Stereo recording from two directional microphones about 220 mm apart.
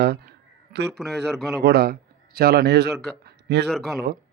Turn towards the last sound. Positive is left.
turn(degrees=0)  # may be behind; listen again after turning